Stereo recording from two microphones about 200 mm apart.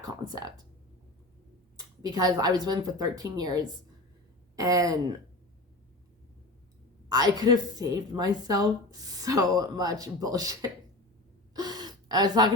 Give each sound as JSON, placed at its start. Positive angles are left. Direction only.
{"t": 0.0, "sound": "a woman's voice", "side_deg": -20}
{"t": 1.7, "sound": "a woman's voice", "side_deg": -20}
{"t": 7.1, "sound": "a woman's voice", "side_deg": -20}
{"t": 11.5, "sound": "gasp", "side_deg": -20}